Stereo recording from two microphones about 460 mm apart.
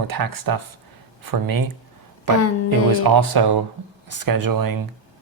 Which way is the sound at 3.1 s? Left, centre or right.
Right.